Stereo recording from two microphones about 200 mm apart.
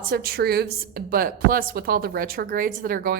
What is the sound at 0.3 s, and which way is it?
A woman's voice, 50° right (ahead or behind).